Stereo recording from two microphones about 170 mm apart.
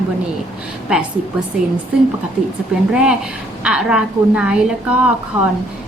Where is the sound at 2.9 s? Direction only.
5° right (ahead or behind).